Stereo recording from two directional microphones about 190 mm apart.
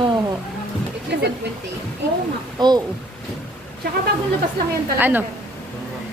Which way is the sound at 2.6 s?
20° right (ahead or behind).